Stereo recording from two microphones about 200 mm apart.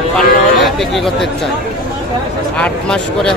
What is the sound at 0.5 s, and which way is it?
Speech, centre (ahead or behind).